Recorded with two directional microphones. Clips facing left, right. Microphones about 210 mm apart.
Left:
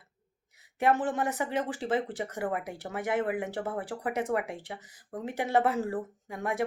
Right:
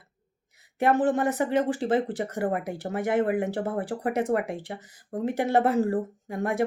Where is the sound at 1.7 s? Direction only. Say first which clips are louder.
Right 5 dB; 35° right (ahead or behind).